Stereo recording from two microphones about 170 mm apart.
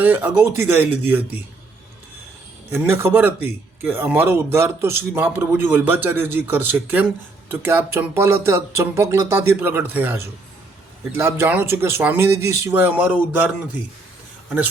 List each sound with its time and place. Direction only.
0.0 s speech: 10° right (ahead or behind)
2.6 s speech: 15° right (ahead or behind)